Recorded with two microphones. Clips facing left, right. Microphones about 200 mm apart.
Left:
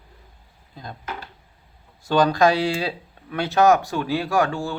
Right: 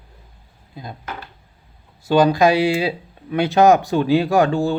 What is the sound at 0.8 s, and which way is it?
Speech, 10° right (ahead or behind).